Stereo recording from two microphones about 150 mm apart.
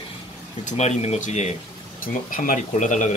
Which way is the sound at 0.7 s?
45° left (ahead or behind).